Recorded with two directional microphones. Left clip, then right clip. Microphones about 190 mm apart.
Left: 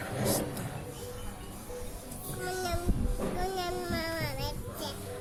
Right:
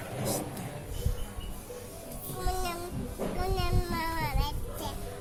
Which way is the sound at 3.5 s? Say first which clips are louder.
Even; 20° right (ahead or behind).